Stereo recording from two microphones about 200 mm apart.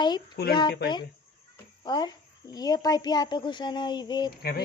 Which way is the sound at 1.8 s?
20° left (ahead or behind).